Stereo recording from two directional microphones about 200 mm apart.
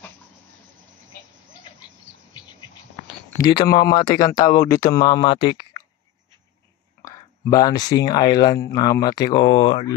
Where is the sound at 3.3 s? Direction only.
20° left (ahead or behind).